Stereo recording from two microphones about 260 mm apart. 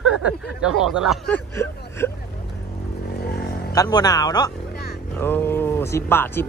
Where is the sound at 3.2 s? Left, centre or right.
Left.